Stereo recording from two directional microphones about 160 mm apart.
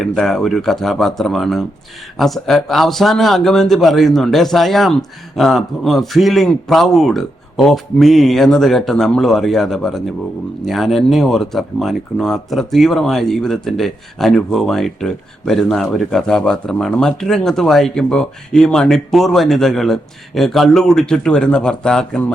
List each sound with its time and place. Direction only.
0.0 s speech: centre (ahead or behind)